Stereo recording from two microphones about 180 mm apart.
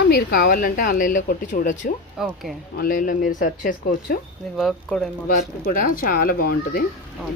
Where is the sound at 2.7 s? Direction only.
55° left (ahead or behind).